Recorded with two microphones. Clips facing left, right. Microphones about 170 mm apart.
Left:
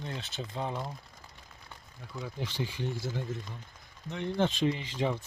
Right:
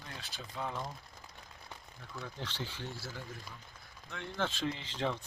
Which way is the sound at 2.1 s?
15° left (ahead or behind).